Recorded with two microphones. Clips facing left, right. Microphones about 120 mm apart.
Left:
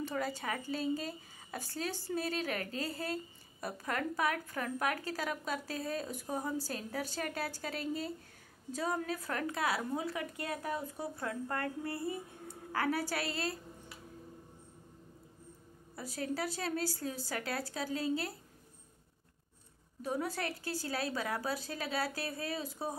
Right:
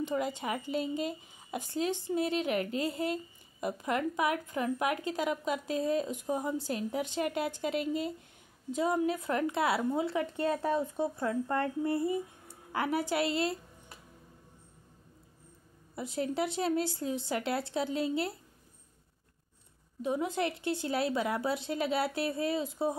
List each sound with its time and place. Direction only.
0.0 s a woman's voice: 20° right (ahead or behind)
16.0 s a woman's voice: 25° right (ahead or behind)
20.0 s a woman's voice: 20° right (ahead or behind)